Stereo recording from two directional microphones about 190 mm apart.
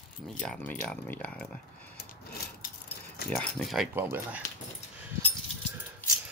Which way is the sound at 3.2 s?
5° left (ahead or behind).